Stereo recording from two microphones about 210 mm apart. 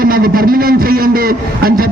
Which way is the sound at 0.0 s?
45° right (ahead or behind).